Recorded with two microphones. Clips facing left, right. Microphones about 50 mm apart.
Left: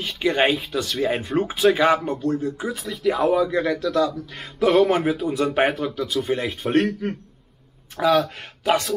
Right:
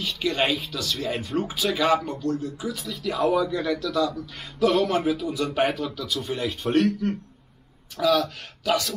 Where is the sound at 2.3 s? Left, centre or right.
Left; by 6.8 s centre.